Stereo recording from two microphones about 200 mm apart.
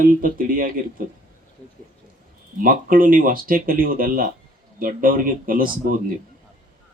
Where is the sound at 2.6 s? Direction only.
45° right (ahead or behind).